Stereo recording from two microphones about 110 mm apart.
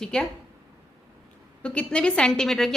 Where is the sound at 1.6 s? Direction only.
10° left (ahead or behind).